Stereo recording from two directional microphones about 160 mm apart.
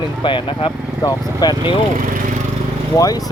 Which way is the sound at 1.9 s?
60° right (ahead or behind).